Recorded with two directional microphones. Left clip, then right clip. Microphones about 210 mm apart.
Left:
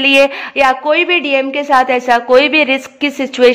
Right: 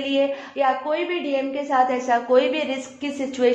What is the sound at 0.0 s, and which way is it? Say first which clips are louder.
A woman's voice: left 12 dB; 40° left (ahead or behind).